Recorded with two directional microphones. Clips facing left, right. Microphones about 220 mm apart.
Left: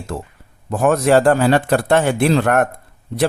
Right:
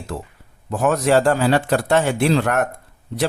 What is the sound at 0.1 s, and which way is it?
A man's voice, 50° left (ahead or behind).